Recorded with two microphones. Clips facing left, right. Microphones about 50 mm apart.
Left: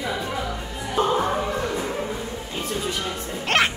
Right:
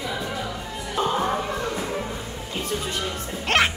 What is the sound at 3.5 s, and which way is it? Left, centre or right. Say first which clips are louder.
Music: even; centre.